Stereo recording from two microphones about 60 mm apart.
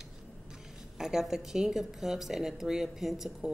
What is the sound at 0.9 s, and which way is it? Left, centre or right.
A woman's voice, centre.